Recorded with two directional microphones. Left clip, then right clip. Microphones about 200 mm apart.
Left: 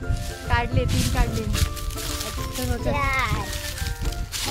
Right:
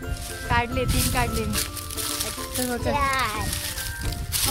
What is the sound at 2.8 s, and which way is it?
Speech, 45° right (ahead or behind).